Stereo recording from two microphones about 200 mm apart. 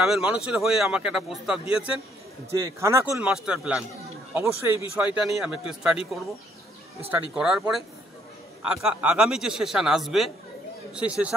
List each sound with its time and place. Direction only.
0.0 s a man's voice: 5° right (ahead or behind)
7.1 s speech: 5° right (ahead or behind)